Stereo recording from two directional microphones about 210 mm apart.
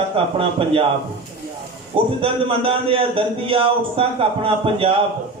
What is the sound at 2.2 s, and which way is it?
Speech, 25° right (ahead or behind).